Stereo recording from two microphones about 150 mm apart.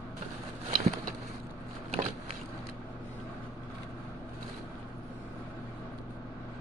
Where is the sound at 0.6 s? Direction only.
50° right (ahead or behind).